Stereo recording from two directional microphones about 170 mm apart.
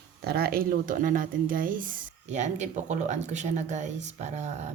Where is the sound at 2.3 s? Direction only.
45° right (ahead or behind).